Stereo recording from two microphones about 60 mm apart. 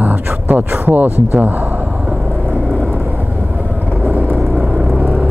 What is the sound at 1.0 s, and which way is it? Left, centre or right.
Speech, left.